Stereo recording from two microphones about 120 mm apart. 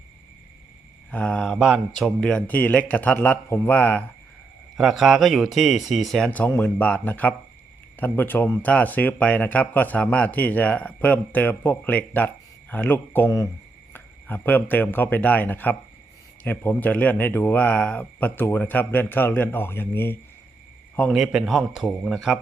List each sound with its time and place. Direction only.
1.1 s speech: 10° left (ahead or behind)
1.5 s mantra: 10° right (ahead or behind)
2.0 s speech: 5° left (ahead or behind)
4.8 s a man's voice: 5° right (ahead or behind); by 20.1 s 20° left (ahead or behind)
21.1 s a man's voice: centre (ahead or behind)